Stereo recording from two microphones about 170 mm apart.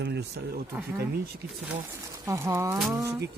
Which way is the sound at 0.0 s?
80° right.